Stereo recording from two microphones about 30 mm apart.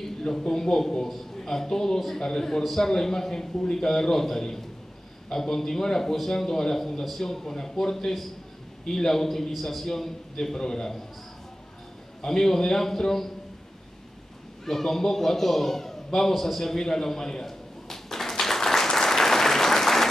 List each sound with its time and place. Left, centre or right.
0.5 s a man's voice: centre
12.2 s a man's voice: centre
14.6 s a sound: centre